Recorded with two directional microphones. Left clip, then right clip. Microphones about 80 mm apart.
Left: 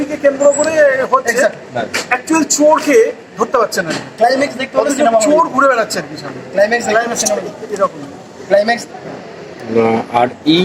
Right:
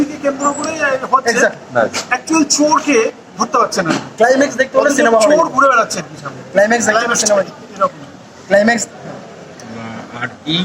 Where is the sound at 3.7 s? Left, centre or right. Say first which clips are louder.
Right 1 dB; left.